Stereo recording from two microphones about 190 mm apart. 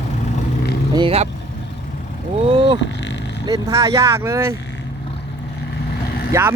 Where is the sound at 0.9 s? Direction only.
30° right (ahead or behind).